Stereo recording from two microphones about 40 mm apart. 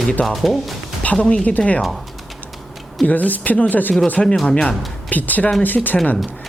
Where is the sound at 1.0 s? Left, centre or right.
Left.